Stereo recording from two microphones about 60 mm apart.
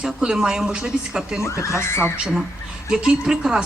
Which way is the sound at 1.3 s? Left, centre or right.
Left.